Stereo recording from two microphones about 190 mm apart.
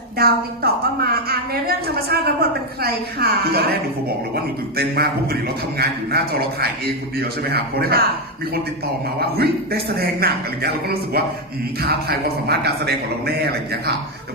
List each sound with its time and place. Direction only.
0.2 s a woman's voice: 55° right (ahead or behind)
4.8 s a woman's voice: 55° right (ahead or behind)
9.4 s a woman's voice: 55° right (ahead or behind)